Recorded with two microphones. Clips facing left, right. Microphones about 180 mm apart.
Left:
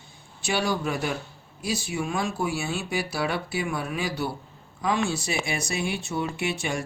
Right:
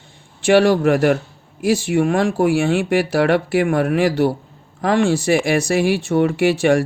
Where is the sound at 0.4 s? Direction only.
90° right.